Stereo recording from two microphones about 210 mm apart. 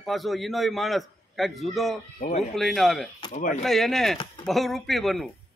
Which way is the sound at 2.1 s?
30° left (ahead or behind).